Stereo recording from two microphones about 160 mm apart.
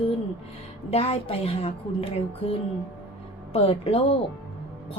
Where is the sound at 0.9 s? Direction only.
40° left (ahead or behind).